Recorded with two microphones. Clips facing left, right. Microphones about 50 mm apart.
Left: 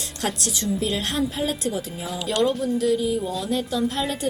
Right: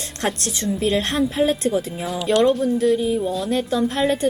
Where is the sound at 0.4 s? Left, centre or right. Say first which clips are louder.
Right 2 dB; right.